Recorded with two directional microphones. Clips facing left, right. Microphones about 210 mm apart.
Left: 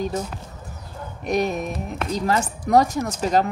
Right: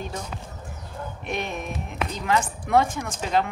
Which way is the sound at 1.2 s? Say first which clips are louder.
Left 9 dB; 40° left (ahead or behind).